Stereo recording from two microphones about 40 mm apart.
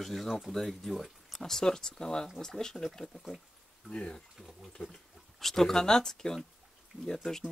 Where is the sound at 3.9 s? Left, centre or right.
Left.